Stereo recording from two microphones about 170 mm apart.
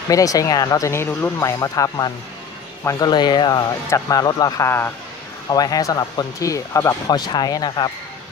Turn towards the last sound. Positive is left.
turn(degrees=25)  # may be behind; listen again after turning